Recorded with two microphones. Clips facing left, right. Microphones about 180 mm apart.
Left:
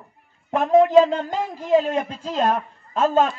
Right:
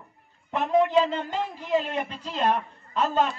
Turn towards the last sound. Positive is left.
turn(degrees=45)  # may be behind; listen again after turning